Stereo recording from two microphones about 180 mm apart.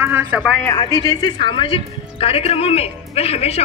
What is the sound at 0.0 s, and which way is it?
Speech, 15° right (ahead or behind).